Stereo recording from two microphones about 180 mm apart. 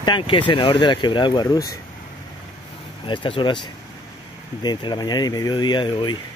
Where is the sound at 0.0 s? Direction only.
25° left (ahead or behind).